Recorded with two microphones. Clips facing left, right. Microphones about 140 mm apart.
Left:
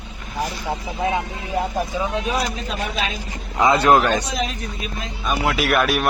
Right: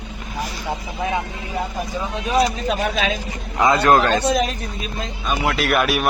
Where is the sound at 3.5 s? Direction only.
25° left (ahead or behind).